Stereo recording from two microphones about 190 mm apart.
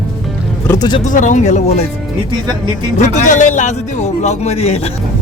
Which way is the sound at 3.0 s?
40° left (ahead or behind).